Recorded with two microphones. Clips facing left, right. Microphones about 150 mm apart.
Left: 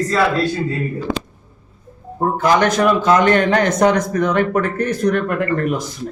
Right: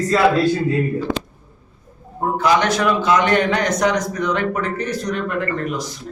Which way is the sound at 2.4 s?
50° left (ahead or behind).